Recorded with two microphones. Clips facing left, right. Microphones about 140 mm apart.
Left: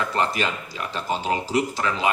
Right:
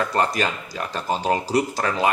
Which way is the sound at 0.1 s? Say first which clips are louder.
Right 2 dB; 40° right (ahead or behind).